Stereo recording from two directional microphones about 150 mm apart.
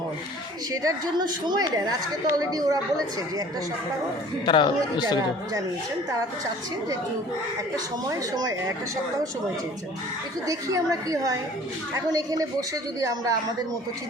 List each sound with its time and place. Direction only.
0.7 s a woman's voice: 25° right (ahead or behind)
4.4 s speech: 30° left (ahead or behind)
8.0 s a woman's voice: 25° right (ahead or behind)
10.4 s a woman's voice: 20° right (ahead or behind)